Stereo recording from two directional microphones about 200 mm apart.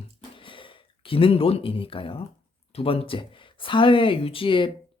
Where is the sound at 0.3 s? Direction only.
25° left (ahead or behind).